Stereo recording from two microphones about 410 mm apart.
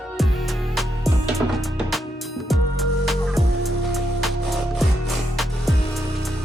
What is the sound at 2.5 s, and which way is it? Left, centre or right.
Music, centre.